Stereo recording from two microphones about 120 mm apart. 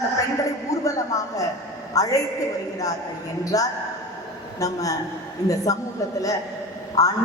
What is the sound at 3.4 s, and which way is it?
A woman's voice, 30° left (ahead or behind).